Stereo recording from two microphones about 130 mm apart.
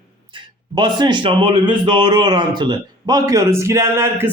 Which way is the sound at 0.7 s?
35° right (ahead or behind).